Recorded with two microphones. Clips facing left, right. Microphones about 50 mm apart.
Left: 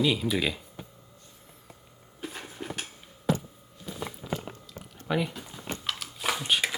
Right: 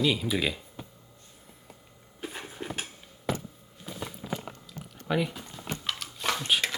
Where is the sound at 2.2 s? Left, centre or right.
Centre.